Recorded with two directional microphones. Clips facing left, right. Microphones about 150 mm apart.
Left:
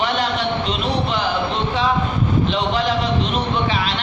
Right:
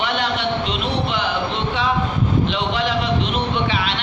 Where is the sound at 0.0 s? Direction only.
40° left (ahead or behind).